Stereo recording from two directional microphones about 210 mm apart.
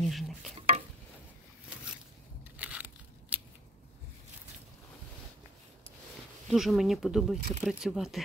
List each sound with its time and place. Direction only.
0.0 s stir: centre (ahead or behind)
0.6 s stir: 30° right (ahead or behind)
2.5 s tearing: 5° right (ahead or behind)
6.4 s speech: centre (ahead or behind)